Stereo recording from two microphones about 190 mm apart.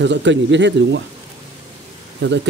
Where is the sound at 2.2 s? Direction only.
70° right (ahead or behind).